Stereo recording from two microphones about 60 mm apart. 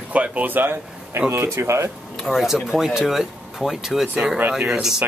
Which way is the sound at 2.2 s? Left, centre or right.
Centre.